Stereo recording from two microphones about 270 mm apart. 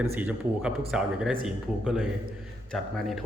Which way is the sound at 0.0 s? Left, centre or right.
Centre.